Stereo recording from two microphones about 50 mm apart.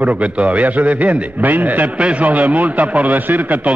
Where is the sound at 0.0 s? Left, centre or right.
Right.